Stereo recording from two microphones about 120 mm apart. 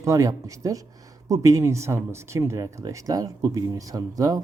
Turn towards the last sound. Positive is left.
turn(degrees=-30)  # may be behind; listen again after turning